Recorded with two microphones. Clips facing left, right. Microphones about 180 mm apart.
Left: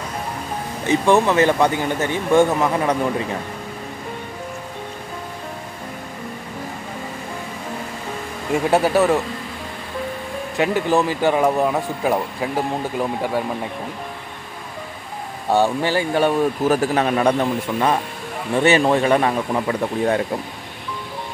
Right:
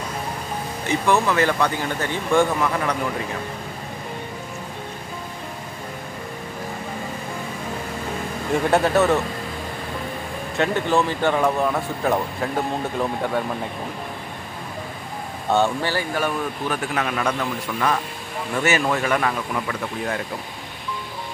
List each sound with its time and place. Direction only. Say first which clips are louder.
0.8 s speech: left 4 dB; 25° left (ahead or behind)
8.6 s speech: left 2 dB; 5° left (ahead or behind)
10.6 s speech: left 2 dB; 15° left (ahead or behind)
15.5 s speech: left 3 dB; 15° left (ahead or behind); by 20.2 s 35° left (ahead or behind)